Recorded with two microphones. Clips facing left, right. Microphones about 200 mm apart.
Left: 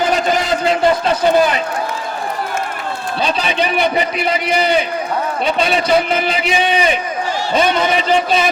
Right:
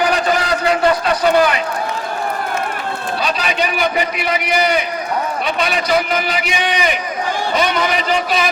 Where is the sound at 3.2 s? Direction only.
30° left (ahead or behind).